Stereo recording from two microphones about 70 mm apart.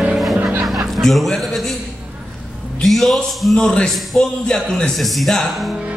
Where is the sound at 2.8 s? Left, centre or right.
Centre.